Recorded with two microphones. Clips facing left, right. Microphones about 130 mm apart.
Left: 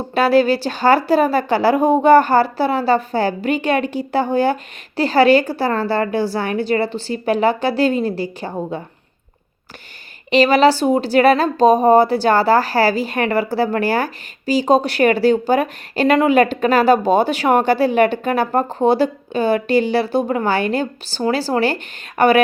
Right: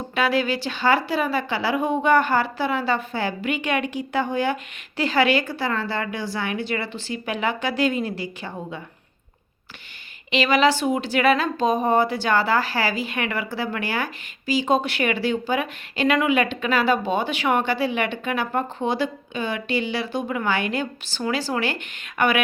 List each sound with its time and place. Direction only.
0.1 s speech: 35° left (ahead or behind)
10.3 s speech: 35° left (ahead or behind)